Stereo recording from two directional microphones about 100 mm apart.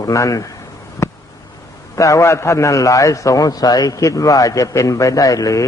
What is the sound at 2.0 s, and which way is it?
A man's voice, 30° left (ahead or behind).